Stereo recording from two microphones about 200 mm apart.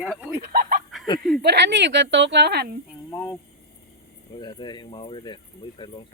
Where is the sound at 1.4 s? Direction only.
60° right (ahead or behind).